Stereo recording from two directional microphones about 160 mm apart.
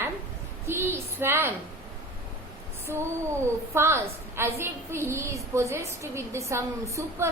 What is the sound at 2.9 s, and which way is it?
A woman's voice, 15° right (ahead or behind).